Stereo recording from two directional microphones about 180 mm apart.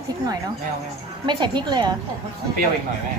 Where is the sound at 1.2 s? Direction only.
25° right (ahead or behind).